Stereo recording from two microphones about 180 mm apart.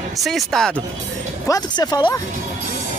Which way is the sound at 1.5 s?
20° left (ahead or behind).